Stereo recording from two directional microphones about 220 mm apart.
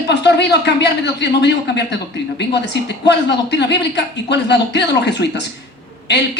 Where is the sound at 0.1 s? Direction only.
50° left (ahead or behind).